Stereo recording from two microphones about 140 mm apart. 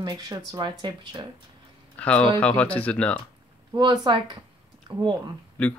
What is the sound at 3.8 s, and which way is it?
A woman's voice, 35° right (ahead or behind).